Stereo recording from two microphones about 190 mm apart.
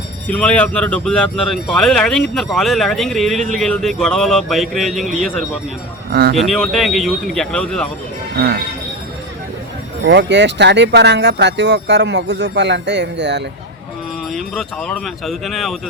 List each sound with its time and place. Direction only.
0.3 s speech: 5° left (ahead or behind)
10.0 s speech: 65° right (ahead or behind)
14.3 s speech: centre (ahead or behind)